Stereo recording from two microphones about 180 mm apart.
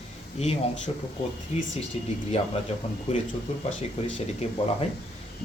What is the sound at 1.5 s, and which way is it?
Speech, 40° left (ahead or behind).